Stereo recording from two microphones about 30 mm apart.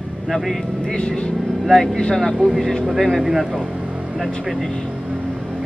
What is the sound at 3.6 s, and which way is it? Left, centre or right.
Vehicle, right.